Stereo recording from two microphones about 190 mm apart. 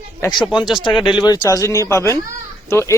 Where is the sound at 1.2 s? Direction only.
20° left (ahead or behind).